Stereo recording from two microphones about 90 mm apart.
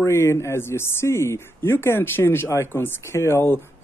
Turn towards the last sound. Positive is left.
turn(degrees=30)  # may be behind; listen again after turning